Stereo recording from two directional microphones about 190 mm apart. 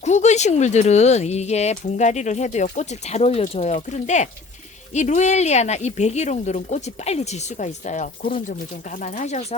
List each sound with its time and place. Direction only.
0.0 s speech: 35° left (ahead or behind)